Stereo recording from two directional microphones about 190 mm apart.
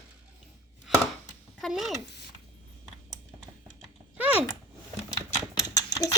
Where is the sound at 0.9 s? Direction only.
Centre (ahead or behind).